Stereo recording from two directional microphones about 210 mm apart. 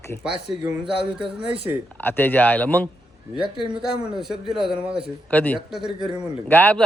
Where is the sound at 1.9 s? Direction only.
10° left (ahead or behind).